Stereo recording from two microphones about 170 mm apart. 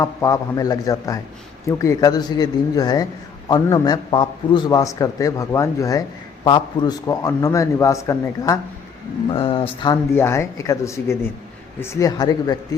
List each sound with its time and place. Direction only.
0.0 s a man's voice: 20° left (ahead or behind)
9.3 s speech: 30° left (ahead or behind)
10.2 s a man's voice: 15° left (ahead or behind)